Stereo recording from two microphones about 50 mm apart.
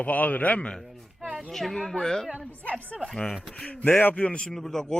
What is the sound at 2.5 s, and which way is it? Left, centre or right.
Speech, left.